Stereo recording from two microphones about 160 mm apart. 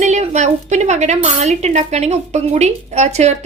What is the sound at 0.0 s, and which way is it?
A woman's voice, 45° right (ahead or behind).